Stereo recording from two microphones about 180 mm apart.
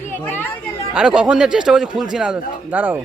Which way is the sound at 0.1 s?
10° left (ahead or behind).